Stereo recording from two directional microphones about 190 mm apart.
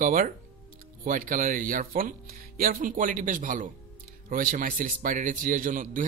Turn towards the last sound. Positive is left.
turn(degrees=-45)  # may be behind; listen again after turning